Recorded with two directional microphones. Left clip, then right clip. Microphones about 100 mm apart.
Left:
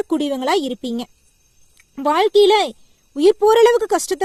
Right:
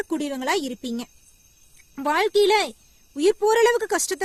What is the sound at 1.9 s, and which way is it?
A woman's voice, 55° left (ahead or behind).